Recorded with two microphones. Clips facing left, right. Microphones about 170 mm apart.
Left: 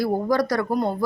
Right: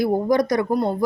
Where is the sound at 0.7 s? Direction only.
Centre (ahead or behind).